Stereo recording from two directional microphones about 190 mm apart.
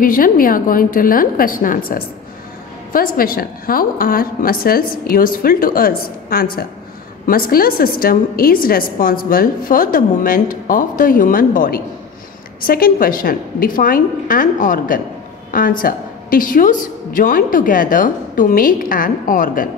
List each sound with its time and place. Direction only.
0.0 s a woman's voice: 45° left (ahead or behind)